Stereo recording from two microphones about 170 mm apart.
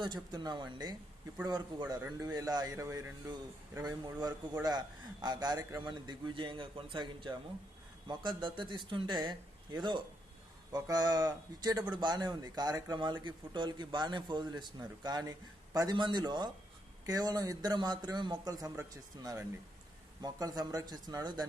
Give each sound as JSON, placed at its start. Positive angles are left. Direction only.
{"t": 0.0, "sound": "a man's voice", "side_deg": -25}